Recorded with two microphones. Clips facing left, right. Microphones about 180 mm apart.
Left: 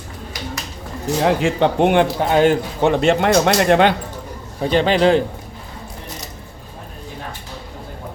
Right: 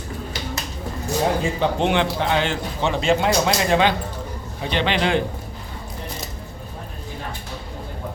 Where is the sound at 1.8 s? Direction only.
50° left (ahead or behind).